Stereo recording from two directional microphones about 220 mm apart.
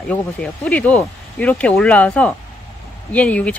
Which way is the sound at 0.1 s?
5° left (ahead or behind).